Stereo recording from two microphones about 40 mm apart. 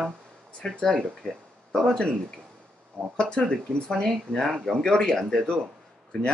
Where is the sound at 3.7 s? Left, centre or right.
Left.